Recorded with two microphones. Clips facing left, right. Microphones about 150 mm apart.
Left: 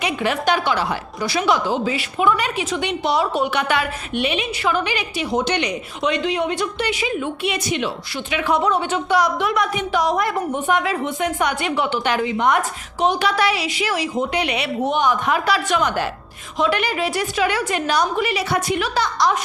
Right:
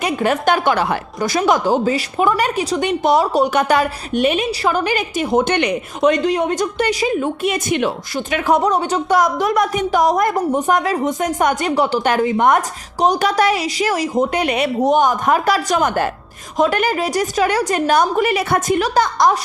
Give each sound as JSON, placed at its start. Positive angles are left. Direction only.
{"t": 0.0, "sound": "a woman's voice", "side_deg": -45}